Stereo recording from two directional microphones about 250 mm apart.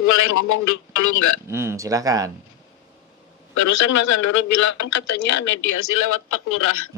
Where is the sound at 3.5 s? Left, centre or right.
Left.